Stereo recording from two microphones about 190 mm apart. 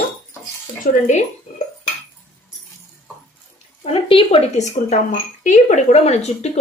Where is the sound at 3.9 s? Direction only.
30° left (ahead or behind).